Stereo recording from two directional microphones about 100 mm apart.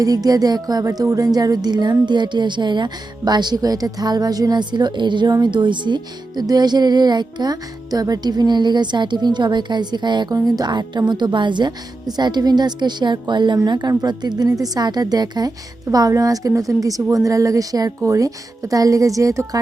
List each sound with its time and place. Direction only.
0.0 s music: 40° right (ahead or behind)
13.7 s a woman's voice: 45° right (ahead or behind)